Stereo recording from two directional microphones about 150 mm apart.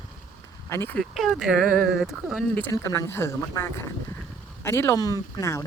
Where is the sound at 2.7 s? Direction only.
20° left (ahead or behind).